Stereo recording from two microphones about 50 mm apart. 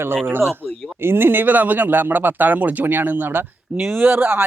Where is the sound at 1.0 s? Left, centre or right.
Right.